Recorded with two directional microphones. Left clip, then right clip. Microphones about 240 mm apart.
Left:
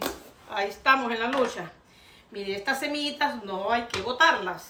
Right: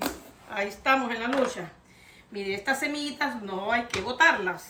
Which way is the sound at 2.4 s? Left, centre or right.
Centre.